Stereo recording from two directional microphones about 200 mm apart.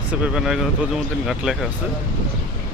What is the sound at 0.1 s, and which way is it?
Speech, 5° right (ahead or behind).